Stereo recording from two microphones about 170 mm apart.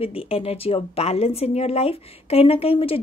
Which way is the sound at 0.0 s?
35° left (ahead or behind).